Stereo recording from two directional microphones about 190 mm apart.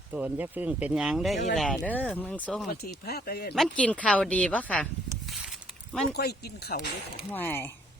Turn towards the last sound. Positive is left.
turn(degrees=10)  # may be behind; listen again after turning